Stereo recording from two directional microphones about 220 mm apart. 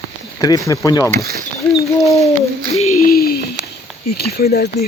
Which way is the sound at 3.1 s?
45° left (ahead or behind).